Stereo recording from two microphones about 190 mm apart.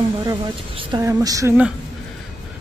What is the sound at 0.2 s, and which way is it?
Speech, 20° right (ahead or behind).